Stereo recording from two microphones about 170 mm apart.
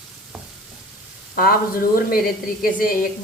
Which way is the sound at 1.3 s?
60° left (ahead or behind).